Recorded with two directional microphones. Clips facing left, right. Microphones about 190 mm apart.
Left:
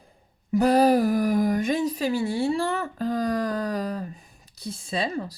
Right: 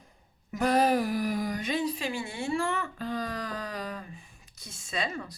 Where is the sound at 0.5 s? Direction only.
35° left (ahead or behind).